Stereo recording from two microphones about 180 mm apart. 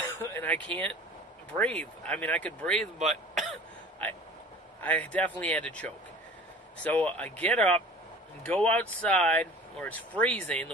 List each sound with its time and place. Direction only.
0.0 s speech: 10° left (ahead or behind)
3.0 s speech: 40° right (ahead or behind)
4.8 s speech: 10° left (ahead or behind)